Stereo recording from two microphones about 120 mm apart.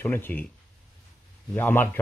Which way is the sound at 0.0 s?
15° left (ahead or behind).